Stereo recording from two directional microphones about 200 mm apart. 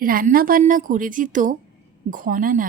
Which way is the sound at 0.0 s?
45° right (ahead or behind).